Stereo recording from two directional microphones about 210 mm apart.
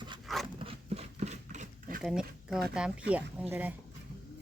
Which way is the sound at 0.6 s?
25° right (ahead or behind).